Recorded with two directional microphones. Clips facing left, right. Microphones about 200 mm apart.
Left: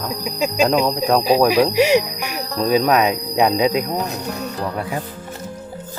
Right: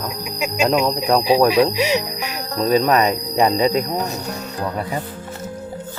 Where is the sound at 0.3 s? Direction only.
30° left (ahead or behind).